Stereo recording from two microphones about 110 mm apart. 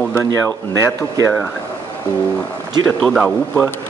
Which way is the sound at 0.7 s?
25° right (ahead or behind).